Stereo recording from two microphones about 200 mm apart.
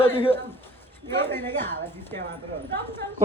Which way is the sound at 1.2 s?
10° left (ahead or behind).